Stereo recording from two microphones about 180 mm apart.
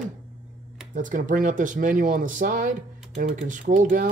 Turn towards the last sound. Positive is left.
turn(degrees=-50)  # may be behind; listen again after turning